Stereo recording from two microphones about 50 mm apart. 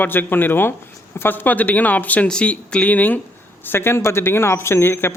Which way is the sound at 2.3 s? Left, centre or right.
Centre.